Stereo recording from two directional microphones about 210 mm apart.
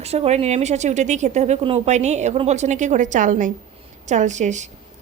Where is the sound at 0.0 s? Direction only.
30° right (ahead or behind).